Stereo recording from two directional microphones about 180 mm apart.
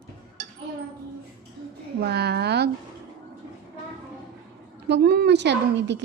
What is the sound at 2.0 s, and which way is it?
Speech, 65° right (ahead or behind).